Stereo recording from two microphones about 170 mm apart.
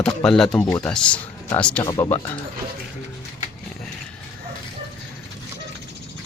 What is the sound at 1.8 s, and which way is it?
Speech, 25° left (ahead or behind).